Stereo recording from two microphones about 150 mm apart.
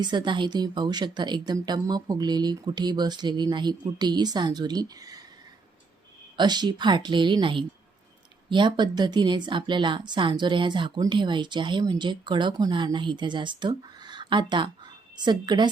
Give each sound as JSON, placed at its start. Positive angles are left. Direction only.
{"t": 0.0, "sound": "a woman's voice", "side_deg": -30}
{"t": 6.3, "sound": "a woman's voice", "side_deg": -30}